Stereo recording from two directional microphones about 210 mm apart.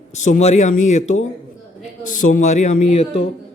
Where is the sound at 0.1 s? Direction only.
35° left (ahead or behind).